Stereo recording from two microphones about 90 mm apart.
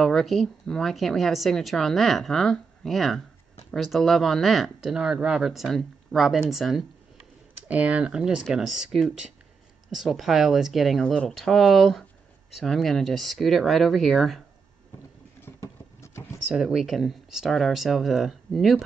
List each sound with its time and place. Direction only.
0.0 s speech: centre (ahead or behind)
7.6 s speech: 15° right (ahead or behind); by 14.4 s centre (ahead or behind)
15.4 s a sound: 30° left (ahead or behind)
16.4 s speech: 5° right (ahead or behind)